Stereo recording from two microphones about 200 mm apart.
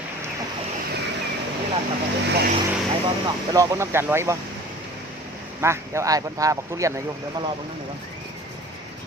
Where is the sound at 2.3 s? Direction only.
50° right (ahead or behind).